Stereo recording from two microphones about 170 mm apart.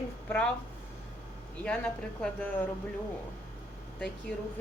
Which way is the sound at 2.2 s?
10° left (ahead or behind).